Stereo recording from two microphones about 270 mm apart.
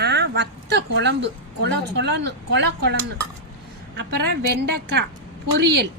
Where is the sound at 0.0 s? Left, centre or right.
Right.